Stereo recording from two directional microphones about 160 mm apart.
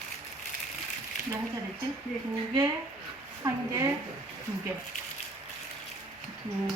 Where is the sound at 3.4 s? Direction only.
20° right (ahead or behind).